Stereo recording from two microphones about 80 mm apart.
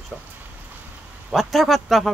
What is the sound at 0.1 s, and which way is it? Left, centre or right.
Speech, centre.